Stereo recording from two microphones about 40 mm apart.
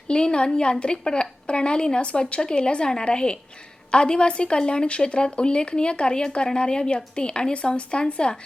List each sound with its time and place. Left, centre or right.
0.1 s speech: left